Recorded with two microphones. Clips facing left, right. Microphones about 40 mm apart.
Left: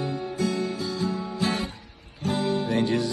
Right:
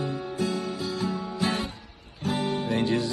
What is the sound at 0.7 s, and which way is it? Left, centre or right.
Music, right.